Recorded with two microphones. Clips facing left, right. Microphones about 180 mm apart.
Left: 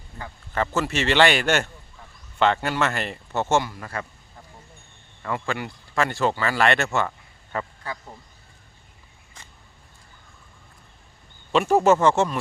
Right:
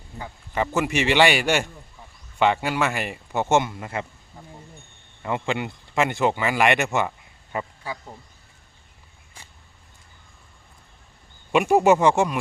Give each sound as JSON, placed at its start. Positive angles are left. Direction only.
{"t": 0.2, "sound": "speech", "side_deg": -15}
{"t": 5.2, "sound": "speech", "side_deg": -20}
{"t": 11.5, "sound": "speech", "side_deg": -15}